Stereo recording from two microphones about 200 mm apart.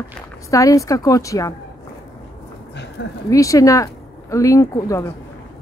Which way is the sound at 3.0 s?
60° left (ahead or behind).